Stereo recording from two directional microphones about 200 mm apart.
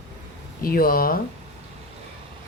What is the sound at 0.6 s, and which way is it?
Speech, 45° left (ahead or behind).